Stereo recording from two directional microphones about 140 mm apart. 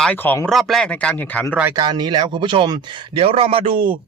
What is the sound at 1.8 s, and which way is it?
Speech, 30° right (ahead or behind).